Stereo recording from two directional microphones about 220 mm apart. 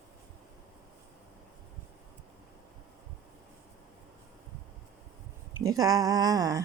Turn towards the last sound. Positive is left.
turn(degrees=-15)  # may be behind; listen again after turning